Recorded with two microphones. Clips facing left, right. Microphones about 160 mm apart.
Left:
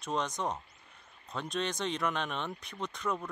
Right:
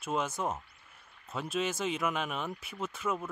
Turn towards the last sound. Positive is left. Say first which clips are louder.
# right 1 dB
turn(degrees=-5)  # may be behind; listen again after turning